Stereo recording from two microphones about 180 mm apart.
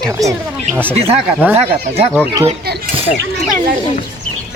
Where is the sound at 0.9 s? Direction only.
35° right (ahead or behind).